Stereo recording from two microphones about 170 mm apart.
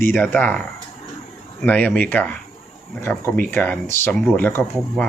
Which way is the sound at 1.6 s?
10° left (ahead or behind).